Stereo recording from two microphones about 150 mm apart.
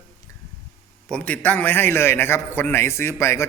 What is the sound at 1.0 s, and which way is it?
A man's voice, 5° left (ahead or behind).